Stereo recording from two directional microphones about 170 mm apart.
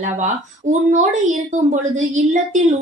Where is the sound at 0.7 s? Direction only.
45° right (ahead or behind).